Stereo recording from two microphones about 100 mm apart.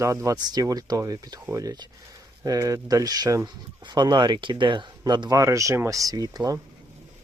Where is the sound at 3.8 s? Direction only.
45° right (ahead or behind).